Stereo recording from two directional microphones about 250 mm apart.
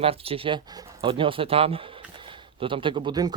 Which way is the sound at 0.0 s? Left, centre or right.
Right.